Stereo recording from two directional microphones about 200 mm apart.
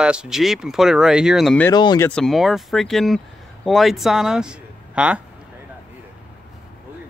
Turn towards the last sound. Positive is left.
turn(degrees=-5)  # may be behind; listen again after turning